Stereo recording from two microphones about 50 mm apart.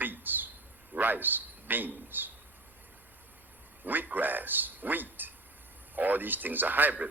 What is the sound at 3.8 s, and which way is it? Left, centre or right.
A man's voice, right.